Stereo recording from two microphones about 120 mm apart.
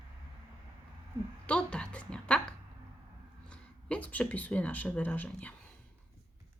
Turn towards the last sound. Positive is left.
turn(degrees=10)  # may be behind; listen again after turning